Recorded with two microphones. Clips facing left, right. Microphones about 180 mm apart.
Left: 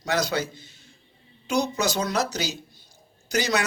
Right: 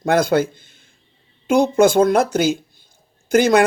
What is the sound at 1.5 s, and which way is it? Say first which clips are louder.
Speech: right 11 dB; 55° right (ahead or behind).